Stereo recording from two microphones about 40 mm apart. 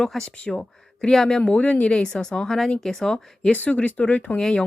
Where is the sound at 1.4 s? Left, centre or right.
Left; by 3.5 s centre.